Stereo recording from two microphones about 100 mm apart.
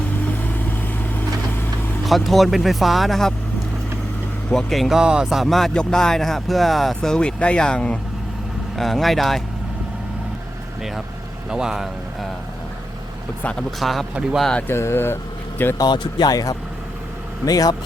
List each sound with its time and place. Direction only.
0.4 s vehicle: 20° left (ahead or behind)
2.0 s speech: centre (ahead or behind)
4.5 s speech: centre (ahead or behind)
11.4 s speech: 5° right (ahead or behind)
13.4 s speech: 10° left (ahead or behind)
13.7 s speech: centre (ahead or behind)
14.7 s speech: 25° left (ahead or behind)
15.8 s speech: 45° left (ahead or behind)